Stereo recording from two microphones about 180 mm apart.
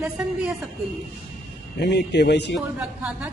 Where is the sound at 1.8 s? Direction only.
70° left (ahead or behind).